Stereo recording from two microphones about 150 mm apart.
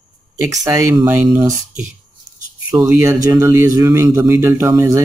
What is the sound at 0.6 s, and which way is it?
Speech, 25° right (ahead or behind).